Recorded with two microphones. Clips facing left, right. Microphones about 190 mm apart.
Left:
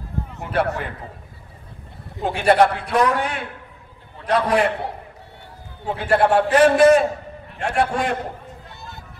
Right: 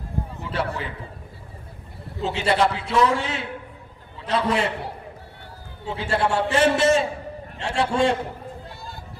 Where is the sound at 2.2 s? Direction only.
55° left (ahead or behind).